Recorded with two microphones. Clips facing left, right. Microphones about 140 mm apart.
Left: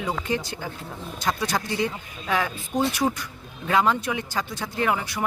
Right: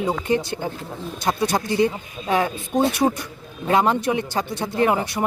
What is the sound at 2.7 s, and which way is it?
Speech, 35° right (ahead or behind).